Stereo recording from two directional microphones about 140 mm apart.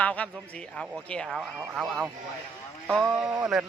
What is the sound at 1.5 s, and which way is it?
Speech, 10° right (ahead or behind).